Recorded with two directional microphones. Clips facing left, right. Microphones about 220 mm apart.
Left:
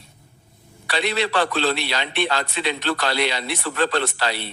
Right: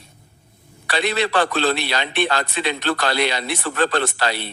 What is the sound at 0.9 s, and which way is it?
A man's voice, 50° right (ahead or behind).